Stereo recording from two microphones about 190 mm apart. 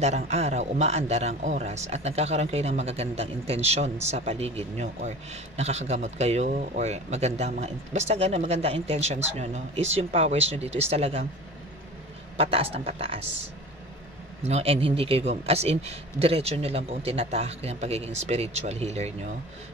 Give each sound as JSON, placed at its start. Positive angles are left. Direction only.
{"t": 0.0, "sound": "a man's voice", "side_deg": -35}
{"t": 12.4, "sound": "a man's voice", "side_deg": -30}
{"t": 14.4, "sound": "a man's voice", "side_deg": -30}